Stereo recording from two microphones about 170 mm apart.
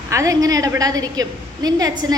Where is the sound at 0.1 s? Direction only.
20° right (ahead or behind).